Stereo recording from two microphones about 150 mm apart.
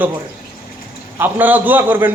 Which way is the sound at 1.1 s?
10° right (ahead or behind).